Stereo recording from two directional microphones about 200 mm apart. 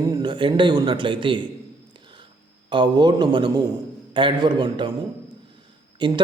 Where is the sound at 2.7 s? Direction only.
20° right (ahead or behind).